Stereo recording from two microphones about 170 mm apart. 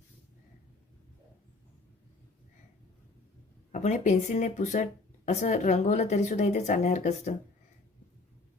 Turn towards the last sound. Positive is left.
turn(degrees=45)  # may be behind; listen again after turning